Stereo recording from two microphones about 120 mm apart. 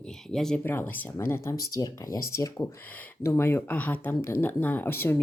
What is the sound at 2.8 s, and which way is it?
Speech, 15° left (ahead or behind).